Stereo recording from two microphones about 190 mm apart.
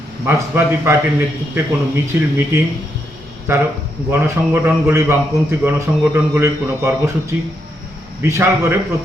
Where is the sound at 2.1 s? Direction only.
10° right (ahead or behind).